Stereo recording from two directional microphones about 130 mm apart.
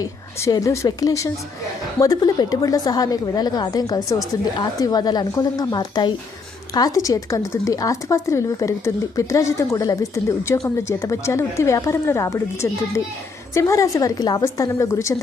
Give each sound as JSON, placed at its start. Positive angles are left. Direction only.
{"t": 0.0, "sound": "speech", "side_deg": 25}